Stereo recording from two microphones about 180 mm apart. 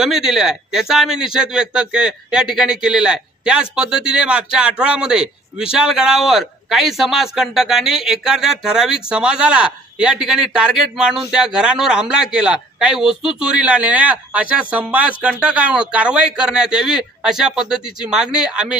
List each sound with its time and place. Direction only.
0.0 s speech: 5° right (ahead or behind)